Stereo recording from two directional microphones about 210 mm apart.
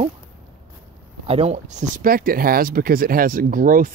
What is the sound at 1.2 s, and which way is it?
Speech, 30° right (ahead or behind).